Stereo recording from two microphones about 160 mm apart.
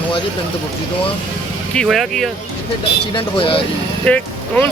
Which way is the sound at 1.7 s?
Centre (ahead or behind).